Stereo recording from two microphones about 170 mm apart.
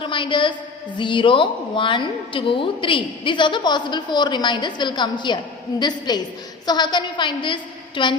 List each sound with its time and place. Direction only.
0.0 s a woman's voice: 30° left (ahead or behind)